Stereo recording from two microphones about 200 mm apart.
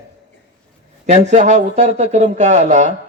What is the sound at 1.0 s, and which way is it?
Speech, 35° right (ahead or behind).